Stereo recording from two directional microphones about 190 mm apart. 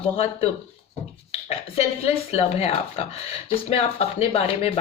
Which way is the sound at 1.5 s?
35° left (ahead or behind).